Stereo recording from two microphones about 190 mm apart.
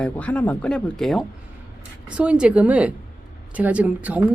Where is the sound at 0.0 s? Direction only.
5° left (ahead or behind).